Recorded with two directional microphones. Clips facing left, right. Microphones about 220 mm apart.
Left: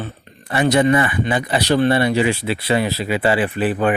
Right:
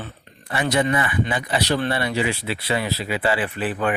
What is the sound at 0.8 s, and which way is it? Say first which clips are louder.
Speech: left 5 dB; 30° left (ahead or behind).